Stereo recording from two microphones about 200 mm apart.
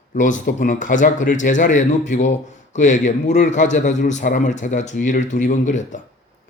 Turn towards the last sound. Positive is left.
turn(degrees=40)  # may be behind; listen again after turning